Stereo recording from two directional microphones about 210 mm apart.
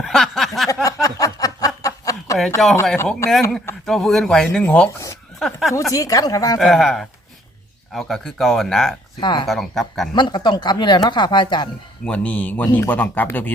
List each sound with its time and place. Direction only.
0.0 s a sound: centre (ahead or behind)
0.7 s a sound: 15° left (ahead or behind)
1.0 s snicker: 15° left (ahead or behind)
2.8 s speech: 5° left (ahead or behind)
5.9 s speech: 15° left (ahead or behind)
6.6 s speech: centre (ahead or behind)
9.2 s speech: 20° left (ahead or behind)
9.5 s speech: centre (ahead or behind)
10.2 s speech: 20° left (ahead or behind)
12.0 s speech: 5° left (ahead or behind)